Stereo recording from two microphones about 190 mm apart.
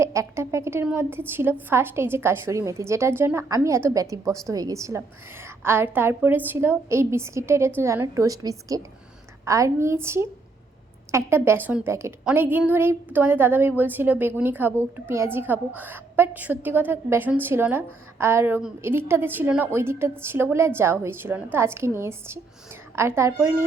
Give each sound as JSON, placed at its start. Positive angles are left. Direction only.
{"t": 0.0, "sound": "a woman's voice", "side_deg": -15}